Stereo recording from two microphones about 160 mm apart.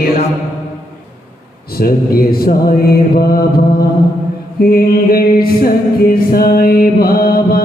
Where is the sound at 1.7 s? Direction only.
70° left (ahead or behind).